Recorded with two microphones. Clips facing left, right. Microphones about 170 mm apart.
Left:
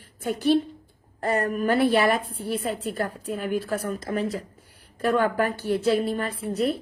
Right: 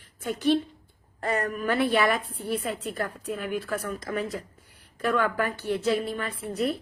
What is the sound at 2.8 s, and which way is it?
A woman's voice, 30° left (ahead or behind).